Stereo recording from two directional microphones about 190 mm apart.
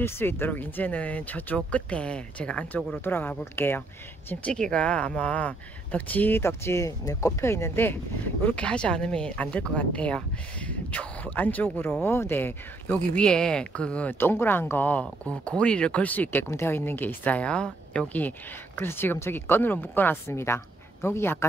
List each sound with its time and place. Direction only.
0.0 s speech: 10° left (ahead or behind)